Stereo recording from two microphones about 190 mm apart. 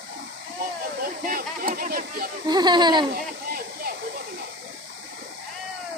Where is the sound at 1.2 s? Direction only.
50° right (ahead or behind).